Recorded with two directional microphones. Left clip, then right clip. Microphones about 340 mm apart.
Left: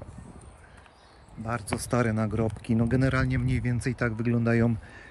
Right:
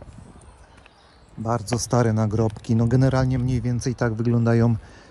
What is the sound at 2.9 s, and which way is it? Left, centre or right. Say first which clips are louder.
Speech: right 6 dB; centre.